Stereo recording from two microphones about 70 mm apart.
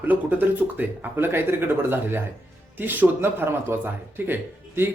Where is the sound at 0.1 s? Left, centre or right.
Right.